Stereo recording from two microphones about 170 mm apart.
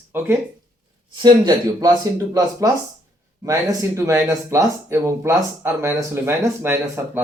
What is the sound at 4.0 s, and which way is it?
Speech, 15° right (ahead or behind).